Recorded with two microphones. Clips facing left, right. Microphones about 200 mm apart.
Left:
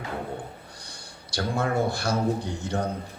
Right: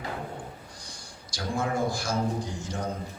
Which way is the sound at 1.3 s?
65° left (ahead or behind).